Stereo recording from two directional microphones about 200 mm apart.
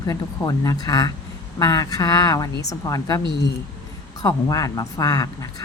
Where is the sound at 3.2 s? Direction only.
60° left (ahead or behind).